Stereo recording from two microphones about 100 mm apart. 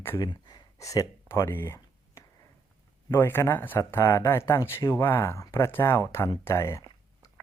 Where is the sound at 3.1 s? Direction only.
20° left (ahead or behind).